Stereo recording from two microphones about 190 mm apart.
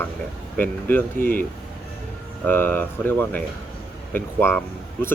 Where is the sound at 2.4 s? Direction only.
10° left (ahead or behind).